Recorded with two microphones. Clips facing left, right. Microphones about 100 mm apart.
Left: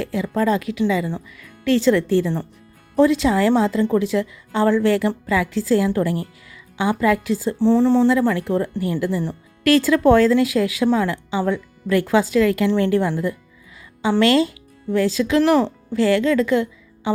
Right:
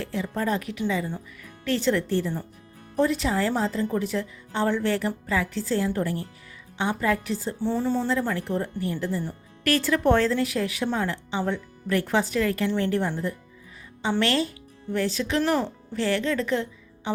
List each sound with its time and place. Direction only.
0.0 s a woman's voice: 90° left